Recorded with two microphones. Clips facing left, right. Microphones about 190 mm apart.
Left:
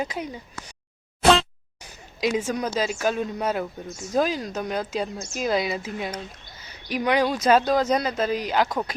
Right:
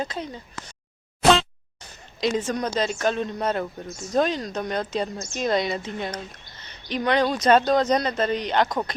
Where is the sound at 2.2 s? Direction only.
10° left (ahead or behind).